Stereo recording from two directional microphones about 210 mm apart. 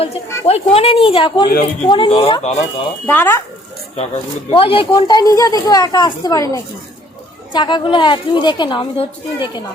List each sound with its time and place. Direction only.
0.0 s speech: 30° left (ahead or behind)
3.1 s speech: 10° left (ahead or behind)
3.9 s speech: 30° left (ahead or behind)